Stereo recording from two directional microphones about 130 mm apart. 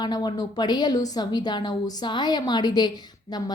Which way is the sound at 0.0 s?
35° left (ahead or behind).